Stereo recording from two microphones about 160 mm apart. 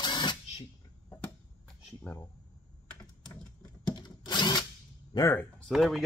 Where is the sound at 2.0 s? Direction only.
20° left (ahead or behind).